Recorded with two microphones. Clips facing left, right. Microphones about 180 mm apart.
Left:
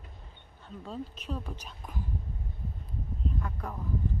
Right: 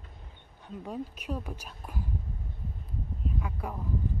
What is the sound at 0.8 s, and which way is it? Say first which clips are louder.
Speech: right 2 dB; 15° right (ahead or behind).